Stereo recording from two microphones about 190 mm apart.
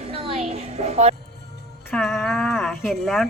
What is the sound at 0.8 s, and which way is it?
Speech, 35° right (ahead or behind).